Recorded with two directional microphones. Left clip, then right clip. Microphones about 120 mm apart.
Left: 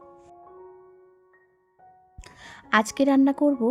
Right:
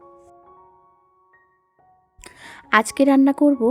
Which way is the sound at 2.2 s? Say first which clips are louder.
Right 4 dB; 40° right (ahead or behind).